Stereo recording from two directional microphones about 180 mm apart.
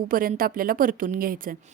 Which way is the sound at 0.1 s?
50° right (ahead or behind).